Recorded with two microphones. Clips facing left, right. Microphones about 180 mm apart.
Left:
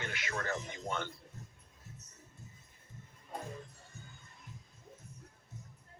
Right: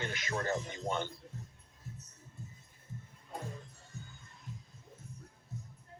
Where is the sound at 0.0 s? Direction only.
40° right (ahead or behind).